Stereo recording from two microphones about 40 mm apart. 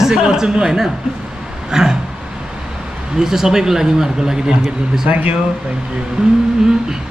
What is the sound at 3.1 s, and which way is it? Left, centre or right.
A man's voice, centre.